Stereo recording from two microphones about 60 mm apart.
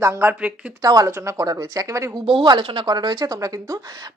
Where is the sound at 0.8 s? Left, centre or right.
Right.